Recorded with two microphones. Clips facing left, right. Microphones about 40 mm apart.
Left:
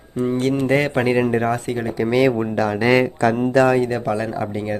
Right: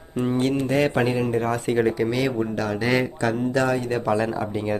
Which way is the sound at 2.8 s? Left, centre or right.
Left.